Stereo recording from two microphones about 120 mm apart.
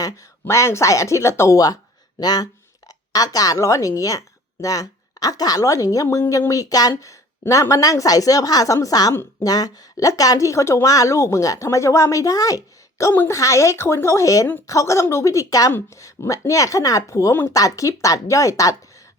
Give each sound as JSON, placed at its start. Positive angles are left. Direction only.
{"t": 0.0, "sound": "a woman's voice", "side_deg": 25}